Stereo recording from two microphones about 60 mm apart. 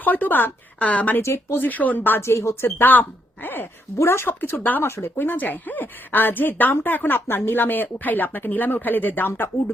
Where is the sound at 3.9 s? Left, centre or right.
Left.